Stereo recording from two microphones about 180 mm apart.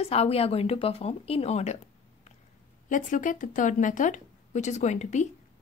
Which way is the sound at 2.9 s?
45° left (ahead or behind).